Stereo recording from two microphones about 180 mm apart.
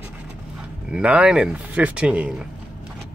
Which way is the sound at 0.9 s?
5° right (ahead or behind).